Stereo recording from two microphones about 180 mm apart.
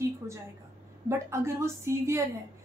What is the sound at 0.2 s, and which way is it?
A woman's voice, 15° right (ahead or behind).